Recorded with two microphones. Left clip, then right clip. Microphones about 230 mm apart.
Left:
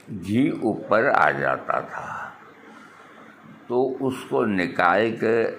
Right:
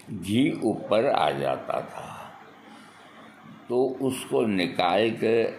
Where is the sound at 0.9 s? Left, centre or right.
Left.